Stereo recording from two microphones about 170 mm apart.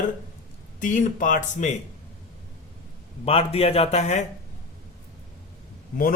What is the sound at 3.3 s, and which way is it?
Speech, 35° left (ahead or behind).